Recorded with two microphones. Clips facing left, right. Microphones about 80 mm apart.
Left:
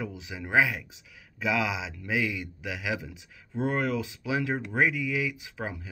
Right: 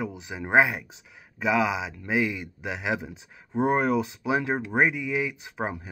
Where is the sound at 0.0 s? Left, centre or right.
Right.